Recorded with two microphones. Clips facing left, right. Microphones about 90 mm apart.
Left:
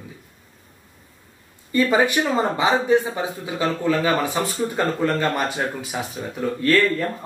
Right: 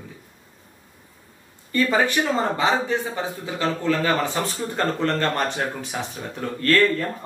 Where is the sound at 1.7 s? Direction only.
15° left (ahead or behind).